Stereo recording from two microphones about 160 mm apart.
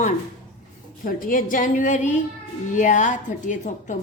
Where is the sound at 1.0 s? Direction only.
60° left (ahead or behind).